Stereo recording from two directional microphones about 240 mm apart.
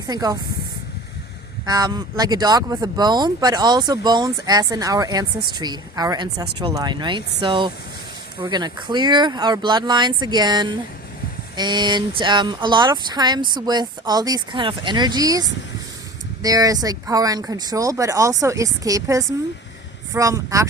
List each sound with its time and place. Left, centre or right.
0.1 s speech: centre
1.6 s speech: centre